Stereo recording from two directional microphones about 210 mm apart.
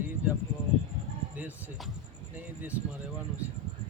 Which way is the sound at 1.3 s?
5° right (ahead or behind).